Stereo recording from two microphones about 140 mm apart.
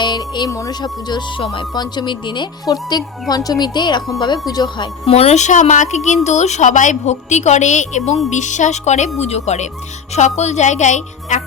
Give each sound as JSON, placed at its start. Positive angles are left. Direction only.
{"t": 0.0, "sound": "speech", "side_deg": 30}
{"t": 5.0, "sound": "a woman's voice", "side_deg": 45}